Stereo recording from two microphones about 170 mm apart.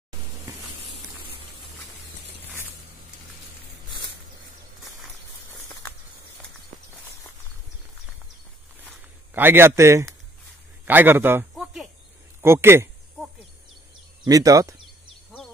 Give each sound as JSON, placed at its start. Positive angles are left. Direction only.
{"t": 9.3, "sound": "a man's voice", "side_deg": -10}
{"t": 11.5, "sound": "cricket", "side_deg": 0}
{"t": 12.4, "sound": "speech", "side_deg": -15}
{"t": 14.2, "sound": "speech", "side_deg": -20}